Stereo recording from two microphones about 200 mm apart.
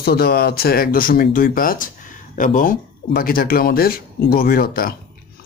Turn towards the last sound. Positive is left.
turn(degrees=50)  # may be behind; listen again after turning